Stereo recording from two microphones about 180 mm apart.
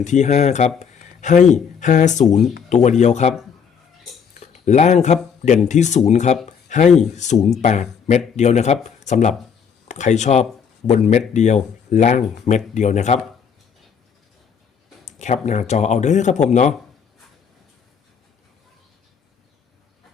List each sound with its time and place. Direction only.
0.0 s speech: 40° left (ahead or behind)
0.8 s a sound: 40° left (ahead or behind)
1.8 s speech: 45° left (ahead or behind)
4.4 s speech: 40° left (ahead or behind)
15.0 s speech: 40° left (ahead or behind)